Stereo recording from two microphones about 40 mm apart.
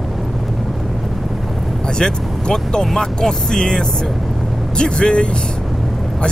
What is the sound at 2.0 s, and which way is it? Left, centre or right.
Speech, centre.